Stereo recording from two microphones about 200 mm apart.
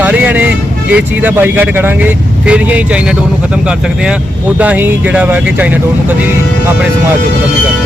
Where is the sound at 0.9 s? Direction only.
10° right (ahead or behind).